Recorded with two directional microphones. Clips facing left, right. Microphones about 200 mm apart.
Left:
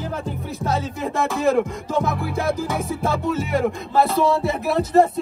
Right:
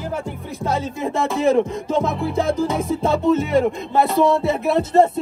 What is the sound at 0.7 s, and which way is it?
Music, 15° right (ahead or behind).